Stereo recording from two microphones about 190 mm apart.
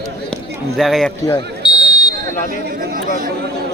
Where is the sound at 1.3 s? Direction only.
25° left (ahead or behind).